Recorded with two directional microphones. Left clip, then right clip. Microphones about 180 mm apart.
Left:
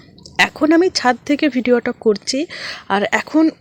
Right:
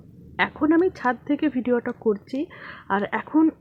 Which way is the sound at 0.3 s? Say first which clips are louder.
Left 7 dB; 25° left (ahead or behind).